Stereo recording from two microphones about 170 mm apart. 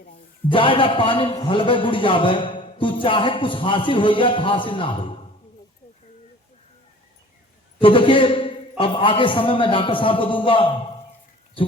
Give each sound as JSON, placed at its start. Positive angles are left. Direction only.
{"t": 0.5, "sound": "a man's voice", "side_deg": 30}
{"t": 7.8, "sound": "a man's voice", "side_deg": 30}